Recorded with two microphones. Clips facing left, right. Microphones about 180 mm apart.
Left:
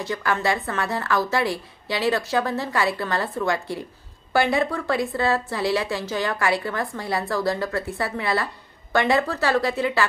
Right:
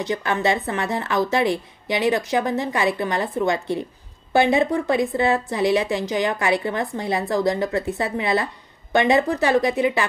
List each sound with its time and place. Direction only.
0.0 s a woman's voice: 20° right (ahead or behind)